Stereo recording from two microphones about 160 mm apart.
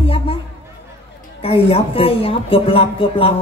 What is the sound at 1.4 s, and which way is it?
Speech, 35° left (ahead or behind).